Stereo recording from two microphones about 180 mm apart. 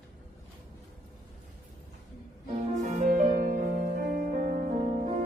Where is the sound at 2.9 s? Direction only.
50° right (ahead or behind).